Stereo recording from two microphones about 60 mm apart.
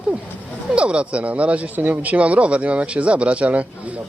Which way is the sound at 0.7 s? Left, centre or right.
Centre.